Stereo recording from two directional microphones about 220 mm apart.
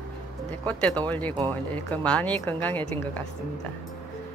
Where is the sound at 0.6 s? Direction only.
5° left (ahead or behind).